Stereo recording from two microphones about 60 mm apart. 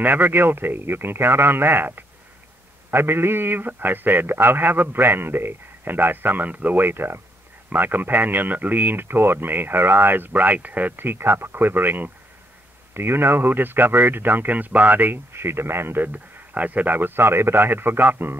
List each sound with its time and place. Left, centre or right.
0.0 s speech: right